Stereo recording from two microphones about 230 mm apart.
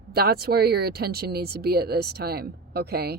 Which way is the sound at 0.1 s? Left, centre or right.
Right.